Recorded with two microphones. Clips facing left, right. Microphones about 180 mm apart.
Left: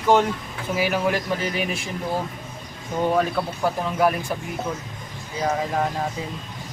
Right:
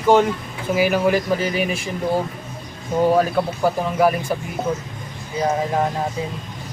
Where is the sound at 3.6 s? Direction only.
5° right (ahead or behind).